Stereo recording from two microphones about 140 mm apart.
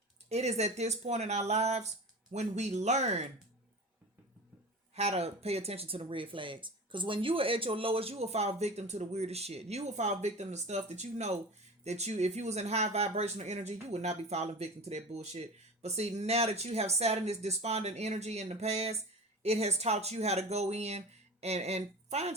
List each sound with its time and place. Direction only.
0.3 s speech: 50° right (ahead or behind)
4.9 s a woman's voice: 50° right (ahead or behind)